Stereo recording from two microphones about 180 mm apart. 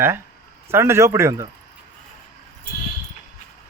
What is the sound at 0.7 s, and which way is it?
Speech, 15° right (ahead or behind).